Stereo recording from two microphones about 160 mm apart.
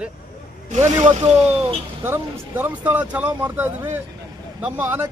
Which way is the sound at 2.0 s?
15° right (ahead or behind).